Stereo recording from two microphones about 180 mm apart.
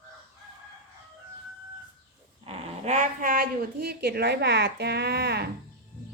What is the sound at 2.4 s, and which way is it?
Speech, 35° right (ahead or behind).